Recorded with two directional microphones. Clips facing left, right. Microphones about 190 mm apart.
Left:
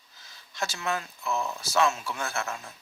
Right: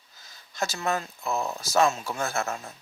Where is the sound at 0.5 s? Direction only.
40° right (ahead or behind).